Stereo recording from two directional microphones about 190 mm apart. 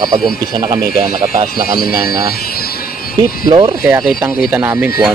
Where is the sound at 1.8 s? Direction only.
50° left (ahead or behind).